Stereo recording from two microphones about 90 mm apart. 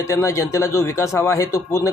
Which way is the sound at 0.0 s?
35° left (ahead or behind).